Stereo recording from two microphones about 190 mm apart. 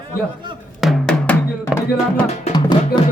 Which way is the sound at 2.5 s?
25° left (ahead or behind).